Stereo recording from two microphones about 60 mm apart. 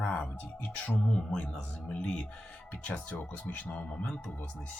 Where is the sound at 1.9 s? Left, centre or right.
Centre.